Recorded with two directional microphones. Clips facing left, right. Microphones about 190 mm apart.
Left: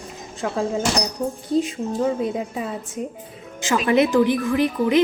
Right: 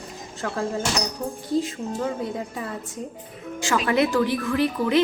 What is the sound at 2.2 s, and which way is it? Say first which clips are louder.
A woman's voice: left 5 dB; 20° left (ahead or behind).